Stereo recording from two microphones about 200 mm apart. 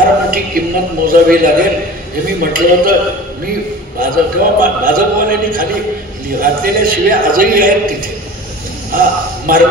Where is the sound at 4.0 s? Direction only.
45° right (ahead or behind).